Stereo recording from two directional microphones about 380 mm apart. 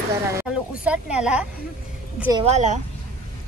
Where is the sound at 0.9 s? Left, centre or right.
Centre.